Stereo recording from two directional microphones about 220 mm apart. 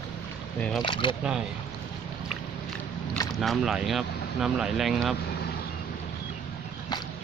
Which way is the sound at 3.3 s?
Centre (ahead or behind).